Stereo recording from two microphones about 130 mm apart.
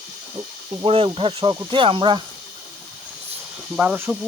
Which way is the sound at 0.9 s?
50° right (ahead or behind).